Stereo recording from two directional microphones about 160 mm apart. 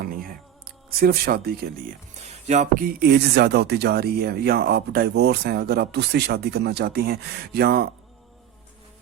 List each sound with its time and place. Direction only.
0.0 s a sound: 65° right (ahead or behind)
1.6 s speech: 70° right (ahead or behind)
2.2 s music: 45° right (ahead or behind)
2.8 s speech: 85° right